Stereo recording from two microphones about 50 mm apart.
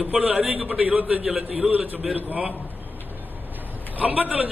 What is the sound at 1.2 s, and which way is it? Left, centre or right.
Speech, centre.